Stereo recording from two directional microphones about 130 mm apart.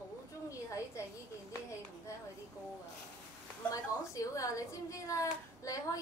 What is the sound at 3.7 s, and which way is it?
A woman's voice, 25° left (ahead or behind).